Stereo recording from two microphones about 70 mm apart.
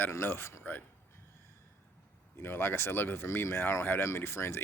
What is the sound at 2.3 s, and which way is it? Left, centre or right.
Speech, left.